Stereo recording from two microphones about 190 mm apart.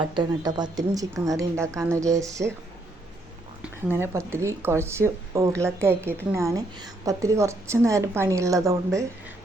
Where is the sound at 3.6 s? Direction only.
10° right (ahead or behind).